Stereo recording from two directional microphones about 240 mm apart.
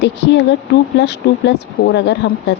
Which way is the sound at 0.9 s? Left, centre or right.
Left.